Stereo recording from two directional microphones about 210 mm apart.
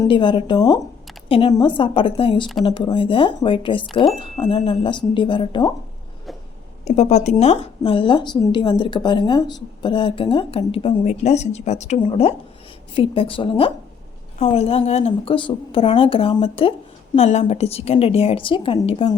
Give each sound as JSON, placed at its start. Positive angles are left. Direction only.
{"t": 0.0, "sound": "speech", "side_deg": 25}
{"t": 6.8, "sound": "speech", "side_deg": 30}